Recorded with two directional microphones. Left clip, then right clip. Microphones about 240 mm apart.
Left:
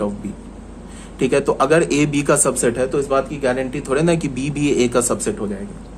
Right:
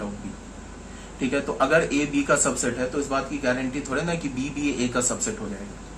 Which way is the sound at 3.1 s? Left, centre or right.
Left.